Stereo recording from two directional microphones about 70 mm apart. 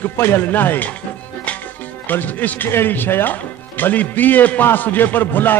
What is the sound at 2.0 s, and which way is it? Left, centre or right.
A man's voice, left.